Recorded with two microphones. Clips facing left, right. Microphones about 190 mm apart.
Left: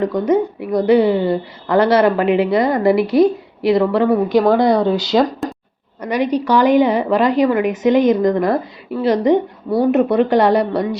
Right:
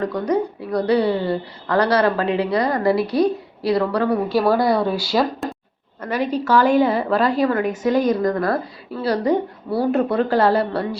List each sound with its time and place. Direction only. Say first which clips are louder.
0.0 s a woman's voice: left 5 dB; 20° left (ahead or behind)
5.4 s a sound: left 3 dB; centre (ahead or behind)
6.0 s a woman's voice: left 4 dB; 15° left (ahead or behind)